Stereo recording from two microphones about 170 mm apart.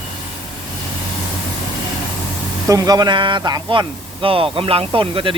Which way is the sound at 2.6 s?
20° right (ahead or behind).